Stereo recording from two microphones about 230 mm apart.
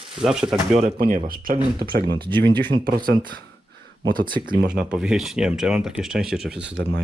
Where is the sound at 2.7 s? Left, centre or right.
Right.